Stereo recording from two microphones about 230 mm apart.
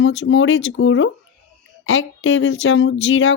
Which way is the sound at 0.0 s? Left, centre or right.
Left.